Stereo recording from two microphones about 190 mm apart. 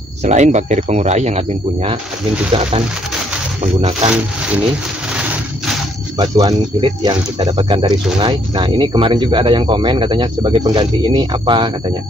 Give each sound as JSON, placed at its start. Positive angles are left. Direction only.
{"t": 0.2, "sound": "speech", "side_deg": -40}
{"t": 3.6, "sound": "speech", "side_deg": -35}
{"t": 4.1, "sound": "a sound", "side_deg": -5}
{"t": 6.1, "sound": "speech", "side_deg": -20}